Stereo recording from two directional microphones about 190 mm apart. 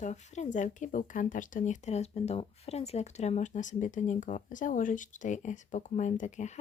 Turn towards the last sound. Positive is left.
turn(degrees=40)  # may be behind; listen again after turning